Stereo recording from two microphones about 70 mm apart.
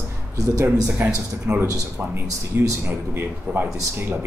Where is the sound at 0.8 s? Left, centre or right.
Right.